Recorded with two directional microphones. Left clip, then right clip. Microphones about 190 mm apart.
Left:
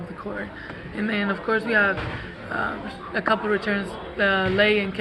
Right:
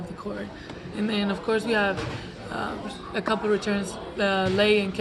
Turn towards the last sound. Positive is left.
turn(degrees=-15)  # may be behind; listen again after turning